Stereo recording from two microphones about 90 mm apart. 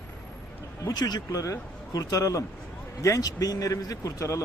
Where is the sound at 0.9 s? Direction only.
50° left (ahead or behind).